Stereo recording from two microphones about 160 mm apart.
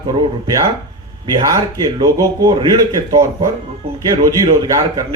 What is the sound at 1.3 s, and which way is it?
Speech, 20° right (ahead or behind).